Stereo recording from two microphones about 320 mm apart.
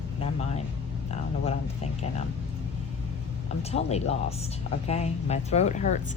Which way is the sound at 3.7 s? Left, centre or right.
Centre.